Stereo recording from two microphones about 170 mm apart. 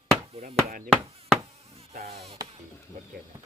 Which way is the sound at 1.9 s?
40° right (ahead or behind).